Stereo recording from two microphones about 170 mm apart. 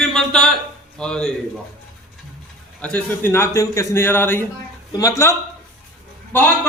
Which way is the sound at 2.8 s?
10° left (ahead or behind).